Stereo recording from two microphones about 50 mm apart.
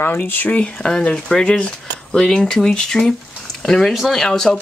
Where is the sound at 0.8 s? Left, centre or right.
Centre.